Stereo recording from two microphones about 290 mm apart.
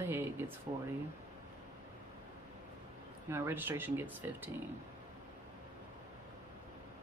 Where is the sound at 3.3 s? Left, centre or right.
Centre.